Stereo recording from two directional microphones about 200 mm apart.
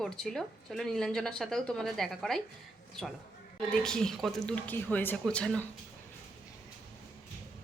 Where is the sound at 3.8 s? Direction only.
5° left (ahead or behind).